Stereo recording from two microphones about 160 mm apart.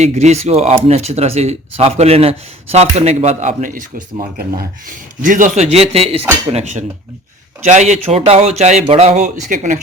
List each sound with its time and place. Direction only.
0.0 s speech: 45° right (ahead or behind); by 4.7 s 70° right (ahead or behind)
5.2 s speech: 55° right (ahead or behind)